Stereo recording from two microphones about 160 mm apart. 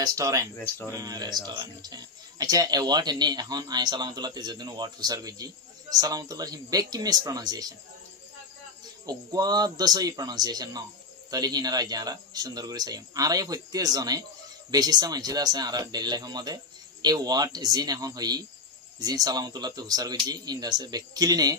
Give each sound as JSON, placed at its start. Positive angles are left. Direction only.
{"t": 0.0, "sound": "speech", "side_deg": -20}
{"t": 9.0, "sound": "speech", "side_deg": -25}